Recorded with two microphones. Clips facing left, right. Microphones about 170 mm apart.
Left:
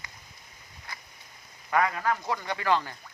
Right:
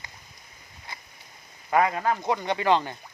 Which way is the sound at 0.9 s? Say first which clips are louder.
Right 1 dB; 25° right (ahead or behind).